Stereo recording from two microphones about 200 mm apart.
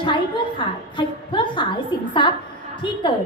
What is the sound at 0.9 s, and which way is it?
A woman's voice, 25° left (ahead or behind).